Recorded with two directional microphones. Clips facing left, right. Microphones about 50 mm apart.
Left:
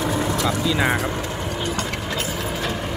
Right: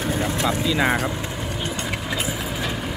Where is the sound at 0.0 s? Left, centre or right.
Left.